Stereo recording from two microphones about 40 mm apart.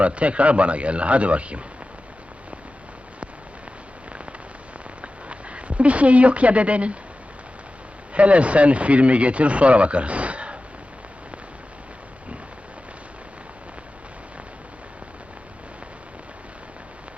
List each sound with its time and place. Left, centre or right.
0.0 s speech: right
5.3 s speech: right
8.1 s speech: right